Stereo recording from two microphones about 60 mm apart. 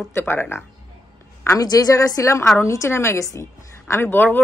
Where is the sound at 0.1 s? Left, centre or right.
Left.